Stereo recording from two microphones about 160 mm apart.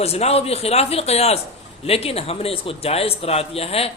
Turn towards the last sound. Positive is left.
turn(degrees=40)  # may be behind; listen again after turning